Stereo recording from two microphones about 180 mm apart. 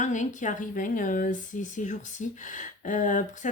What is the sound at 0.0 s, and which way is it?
Speech, 45° left (ahead or behind).